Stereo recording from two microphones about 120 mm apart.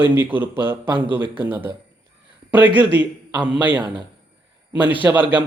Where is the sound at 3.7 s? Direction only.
40° right (ahead or behind).